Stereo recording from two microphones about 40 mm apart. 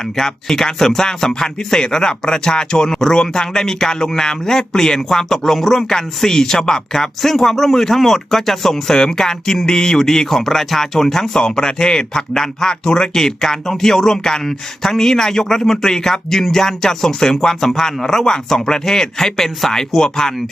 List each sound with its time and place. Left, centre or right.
0.2 s speech: centre